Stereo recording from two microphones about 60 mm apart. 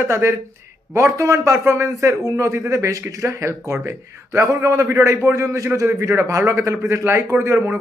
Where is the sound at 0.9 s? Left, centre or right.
Right.